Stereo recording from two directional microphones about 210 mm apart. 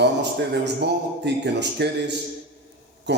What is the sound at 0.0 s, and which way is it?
A man's voice, 55° right (ahead or behind).